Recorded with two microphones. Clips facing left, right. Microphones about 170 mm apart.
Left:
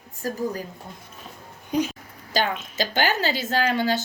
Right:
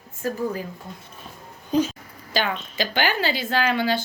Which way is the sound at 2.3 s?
45° left (ahead or behind).